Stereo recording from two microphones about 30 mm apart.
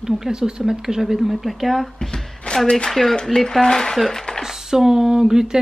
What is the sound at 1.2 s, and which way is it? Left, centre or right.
Speech, centre.